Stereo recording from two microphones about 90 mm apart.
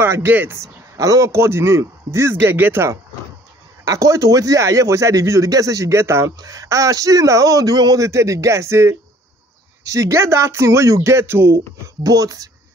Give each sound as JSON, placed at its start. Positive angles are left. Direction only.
{"t": 0.0, "sound": "speech", "side_deg": -25}
{"t": 0.6, "sound": "speech", "side_deg": -35}
{"t": 12.0, "sound": "speech", "side_deg": -40}